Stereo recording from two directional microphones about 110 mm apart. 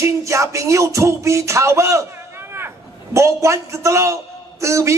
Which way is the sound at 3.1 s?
25° right (ahead or behind).